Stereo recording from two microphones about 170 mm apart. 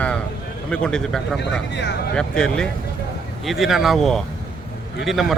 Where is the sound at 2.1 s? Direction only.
5° left (ahead or behind).